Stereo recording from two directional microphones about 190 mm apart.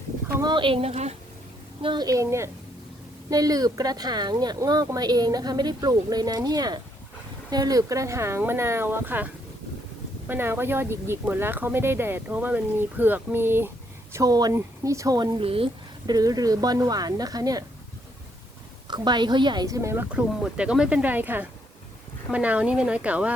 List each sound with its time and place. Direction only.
0.3 s speech: 25° right (ahead or behind)
18.9 s speech: 20° right (ahead or behind); by 23.3 s 5° right (ahead or behind)